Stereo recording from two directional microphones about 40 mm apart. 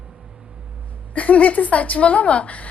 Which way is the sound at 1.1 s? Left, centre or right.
Left.